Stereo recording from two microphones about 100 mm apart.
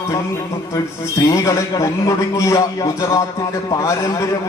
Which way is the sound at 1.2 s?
35° left (ahead or behind).